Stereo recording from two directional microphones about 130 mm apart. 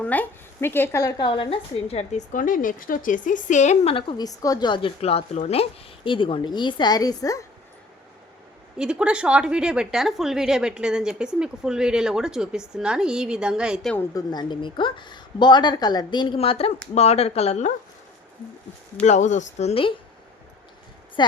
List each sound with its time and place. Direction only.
0.0 s speech: 15° left (ahead or behind); by 3.9 s 65° left (ahead or behind)
4.2 s a woman's voice: 30° left (ahead or behind)
4.9 s speech: 50° left (ahead or behind)
6.1 s a woman's voice: 40° left (ahead or behind)
8.8 s a woman's voice: 5° right (ahead or behind)
14.1 s a woman's voice: 30° left (ahead or behind); by 17.7 s 55° left (ahead or behind)
19.0 s speech: 65° left (ahead or behind)
21.2 s a woman's voice: 35° left (ahead or behind)